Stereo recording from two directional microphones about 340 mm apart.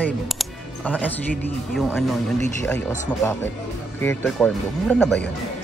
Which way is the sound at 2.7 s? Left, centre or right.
Centre.